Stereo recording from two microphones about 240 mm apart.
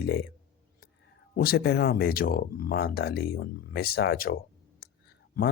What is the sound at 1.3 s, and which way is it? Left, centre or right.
Speech, left.